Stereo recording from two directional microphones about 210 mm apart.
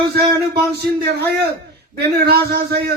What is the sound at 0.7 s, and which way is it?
Speech, 50° right (ahead or behind).